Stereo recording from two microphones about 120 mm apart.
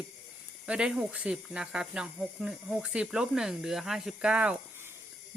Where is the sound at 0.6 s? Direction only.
5° right (ahead or behind).